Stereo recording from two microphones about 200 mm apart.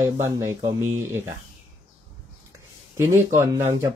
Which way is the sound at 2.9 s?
15° right (ahead or behind).